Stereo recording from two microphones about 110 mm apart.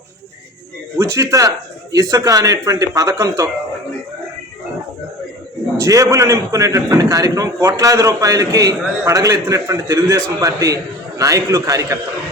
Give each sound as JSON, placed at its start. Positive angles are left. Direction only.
{"t": 0.9, "sound": "a man's voice", "side_deg": -30}
{"t": 5.7, "sound": "a man's voice", "side_deg": -30}